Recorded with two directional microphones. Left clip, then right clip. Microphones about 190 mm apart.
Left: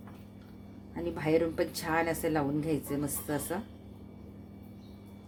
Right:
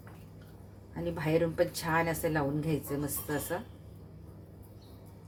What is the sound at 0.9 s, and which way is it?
A woman's voice, 25° left (ahead or behind).